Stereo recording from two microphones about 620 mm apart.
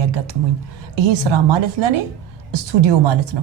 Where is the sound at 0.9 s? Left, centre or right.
Right.